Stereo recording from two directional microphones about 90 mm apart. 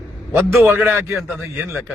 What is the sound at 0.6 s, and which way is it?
Speech, 30° right (ahead or behind).